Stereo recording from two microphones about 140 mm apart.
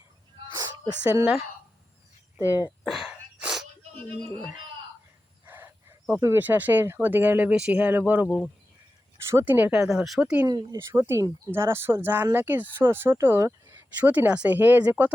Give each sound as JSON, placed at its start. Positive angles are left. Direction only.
{"t": 1.1, "sound": "speech", "side_deg": -10}
{"t": 2.8, "sound": "sneeze", "side_deg": 0}
{"t": 5.5, "sound": "speech", "side_deg": -15}
{"t": 10.4, "sound": "speech", "side_deg": -30}
{"t": 10.9, "sound": "speech", "side_deg": -20}